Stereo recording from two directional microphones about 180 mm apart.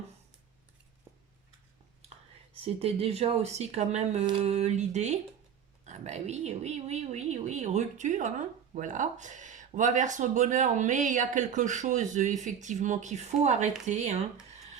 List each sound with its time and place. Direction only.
2.6 s a woman's voice: 30° right (ahead or behind)